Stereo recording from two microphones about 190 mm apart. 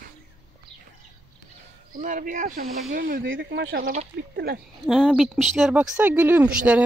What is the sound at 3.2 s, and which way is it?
Speech, 75° right (ahead or behind).